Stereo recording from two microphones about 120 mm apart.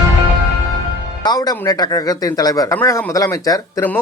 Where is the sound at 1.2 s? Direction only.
35° left (ahead or behind).